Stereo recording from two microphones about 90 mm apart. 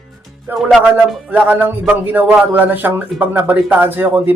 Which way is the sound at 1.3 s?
20° right (ahead or behind).